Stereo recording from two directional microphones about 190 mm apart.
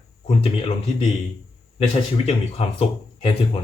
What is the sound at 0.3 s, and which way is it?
Speech, 30° left (ahead or behind).